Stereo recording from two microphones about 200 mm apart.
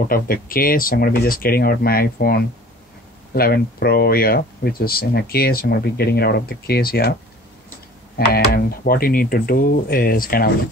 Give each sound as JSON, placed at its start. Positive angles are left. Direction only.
{"t": 0.1, "sound": "speech", "side_deg": 45}
{"t": 8.3, "sound": "speech", "side_deg": 50}